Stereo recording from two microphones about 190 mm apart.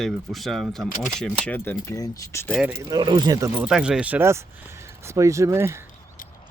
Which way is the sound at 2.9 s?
20° right (ahead or behind).